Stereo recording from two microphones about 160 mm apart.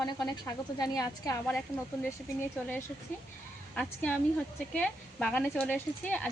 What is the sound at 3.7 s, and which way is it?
Speech, 10° left (ahead or behind).